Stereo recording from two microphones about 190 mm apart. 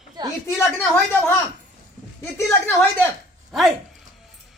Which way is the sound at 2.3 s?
10° left (ahead or behind).